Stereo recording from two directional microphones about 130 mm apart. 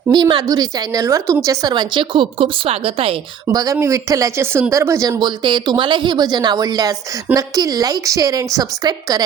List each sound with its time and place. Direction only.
0.1 s speech: 35° right (ahead or behind)
3.4 s speech: 30° right (ahead or behind)